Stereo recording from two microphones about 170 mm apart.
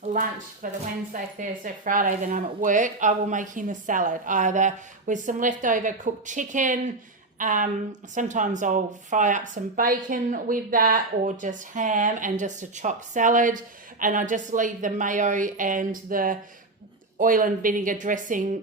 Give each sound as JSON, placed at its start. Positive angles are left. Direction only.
{"t": 0.1, "sound": "speech", "side_deg": -50}